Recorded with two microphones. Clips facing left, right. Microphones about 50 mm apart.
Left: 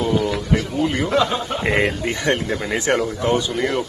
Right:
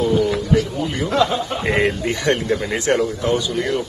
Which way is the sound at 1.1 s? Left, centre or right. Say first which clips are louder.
Right 1 dB; centre.